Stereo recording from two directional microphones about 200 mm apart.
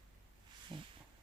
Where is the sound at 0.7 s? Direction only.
25° right (ahead or behind).